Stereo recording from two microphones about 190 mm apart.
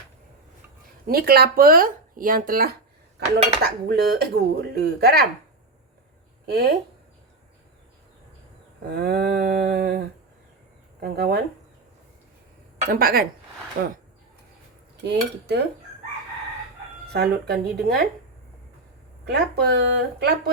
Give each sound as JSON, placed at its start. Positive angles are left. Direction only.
{"t": 1.0, "sound": "speech", "side_deg": -55}
{"t": 6.5, "sound": "speech", "side_deg": -55}
{"t": 8.9, "sound": "speech", "side_deg": -55}
{"t": 11.0, "sound": "speech", "side_deg": -55}
{"t": 12.9, "sound": "speech", "side_deg": -50}
{"t": 15.0, "sound": "speech", "side_deg": -65}
{"t": 17.1, "sound": "speech", "side_deg": -60}
{"t": 19.2, "sound": "speech", "side_deg": -60}